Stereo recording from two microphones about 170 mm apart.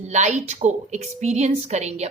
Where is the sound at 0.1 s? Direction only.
45° right (ahead or behind).